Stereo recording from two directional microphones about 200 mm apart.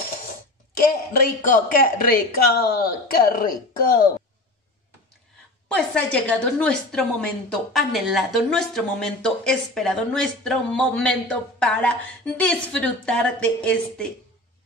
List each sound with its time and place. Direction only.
1.2 s speech: 45° left (ahead or behind)
5.7 s a woman's voice: 5° left (ahead or behind)